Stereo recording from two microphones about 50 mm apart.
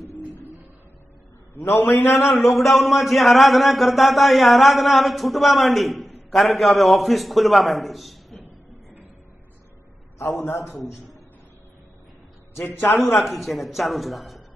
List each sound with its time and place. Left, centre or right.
1.7 s a man's voice: left
2.5 s speech: centre
10.2 s a man's voice: left
10.6 s a man's voice: left
13.0 s speech: centre